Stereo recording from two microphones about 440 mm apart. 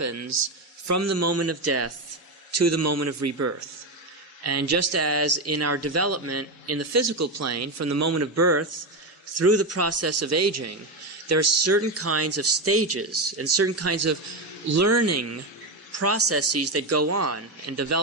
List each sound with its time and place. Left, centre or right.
0.0 s speech: right